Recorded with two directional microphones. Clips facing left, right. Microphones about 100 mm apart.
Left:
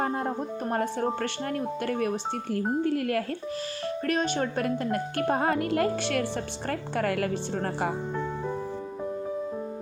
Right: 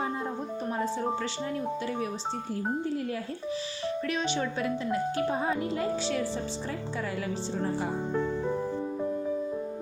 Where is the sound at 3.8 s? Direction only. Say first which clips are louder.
Left 3 dB; 50° left (ahead or behind).